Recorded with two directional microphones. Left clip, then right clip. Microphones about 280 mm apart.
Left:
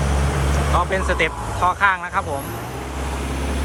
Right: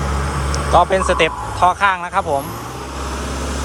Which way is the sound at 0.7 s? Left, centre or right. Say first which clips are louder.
Right 8 dB; centre.